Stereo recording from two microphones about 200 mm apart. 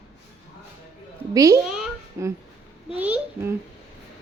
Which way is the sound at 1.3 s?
15° right (ahead or behind).